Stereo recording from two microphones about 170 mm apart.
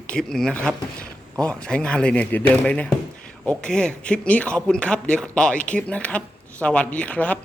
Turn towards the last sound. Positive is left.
turn(degrees=10)  # may be behind; listen again after turning